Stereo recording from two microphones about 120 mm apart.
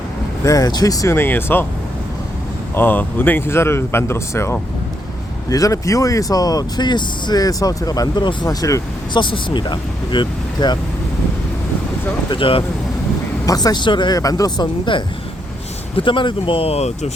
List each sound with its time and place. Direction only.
0.4 s speech: 30° left (ahead or behind)
2.7 s speech: 15° left (ahead or behind)
9.2 s speech: 40° left (ahead or behind)
12.3 s speech: 50° left (ahead or behind)
13.4 s speech: 30° left (ahead or behind); by 17.1 s 60° left (ahead or behind)